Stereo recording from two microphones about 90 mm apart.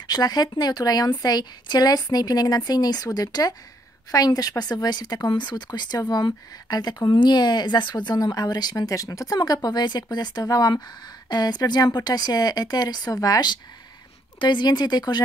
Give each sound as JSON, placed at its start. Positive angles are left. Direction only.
{"t": 0.0, "sound": "speech", "side_deg": 50}